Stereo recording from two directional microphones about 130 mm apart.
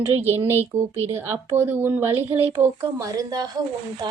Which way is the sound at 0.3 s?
15° right (ahead or behind).